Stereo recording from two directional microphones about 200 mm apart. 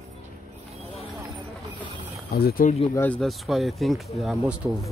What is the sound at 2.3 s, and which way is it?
Speech, 50° left (ahead or behind).